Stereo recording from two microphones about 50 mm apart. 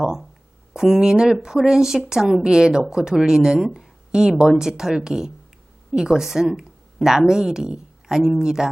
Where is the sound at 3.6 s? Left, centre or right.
Centre.